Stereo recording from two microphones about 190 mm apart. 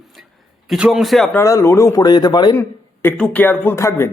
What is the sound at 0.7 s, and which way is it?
Speech, 5° right (ahead or behind).